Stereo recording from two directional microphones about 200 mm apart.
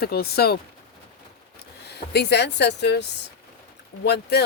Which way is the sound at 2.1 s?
55° left (ahead or behind).